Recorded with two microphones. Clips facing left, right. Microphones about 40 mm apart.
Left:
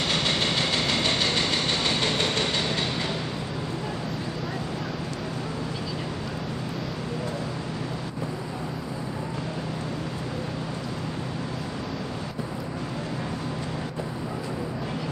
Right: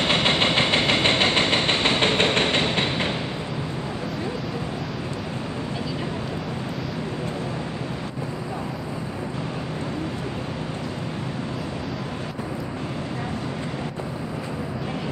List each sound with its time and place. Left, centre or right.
0.0 s engine: right